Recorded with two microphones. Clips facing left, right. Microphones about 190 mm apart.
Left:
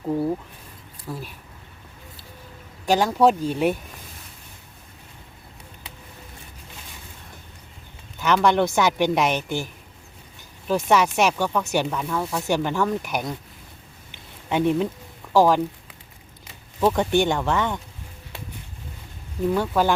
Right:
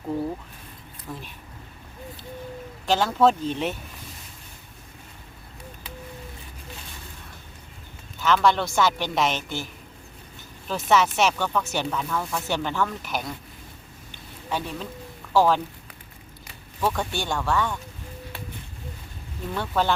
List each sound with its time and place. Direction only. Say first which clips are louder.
1.1 s speech: left 4 dB; 10° left (ahead or behind)
2.8 s speech: left 2 dB; 15° left (ahead or behind)
8.2 s speech: left 2 dB; 15° left (ahead or behind)
10.7 s speech: left 2 dB; 15° left (ahead or behind)
14.1 s a sound: left 4 dB; 20° left (ahead or behind)
15.3 s speech: left 3 dB; 15° left (ahead or behind)
16.8 s speech: left 7 dB; 20° left (ahead or behind)
19.5 s speech: left 2 dB; 10° left (ahead or behind)